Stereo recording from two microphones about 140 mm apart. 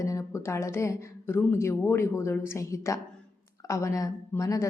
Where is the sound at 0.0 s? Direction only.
25° left (ahead or behind).